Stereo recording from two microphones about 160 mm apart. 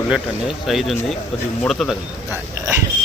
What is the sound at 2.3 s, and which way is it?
Speech, 15° right (ahead or behind).